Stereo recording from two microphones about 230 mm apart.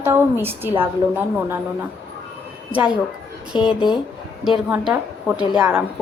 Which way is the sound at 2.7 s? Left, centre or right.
Centre.